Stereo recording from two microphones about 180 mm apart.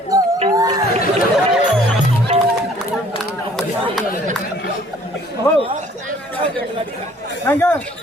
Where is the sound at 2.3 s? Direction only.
30° right (ahead or behind).